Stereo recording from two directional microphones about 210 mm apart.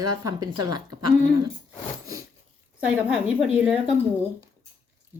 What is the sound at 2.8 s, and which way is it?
A woman's voice, 5° right (ahead or behind).